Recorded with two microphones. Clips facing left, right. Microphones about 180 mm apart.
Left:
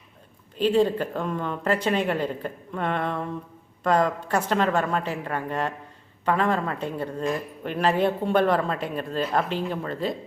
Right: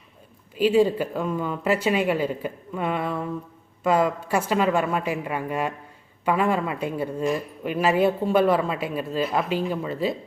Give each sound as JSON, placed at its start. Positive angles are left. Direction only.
{"t": 0.5, "sound": "a woman's voice", "side_deg": -10}